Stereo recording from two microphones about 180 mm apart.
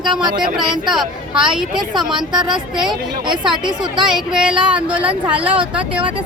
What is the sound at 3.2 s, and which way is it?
Speech, 25° right (ahead or behind).